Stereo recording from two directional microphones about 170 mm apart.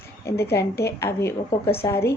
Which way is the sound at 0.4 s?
15° left (ahead or behind).